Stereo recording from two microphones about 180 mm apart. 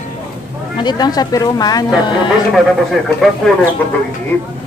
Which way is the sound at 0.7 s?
25° left (ahead or behind).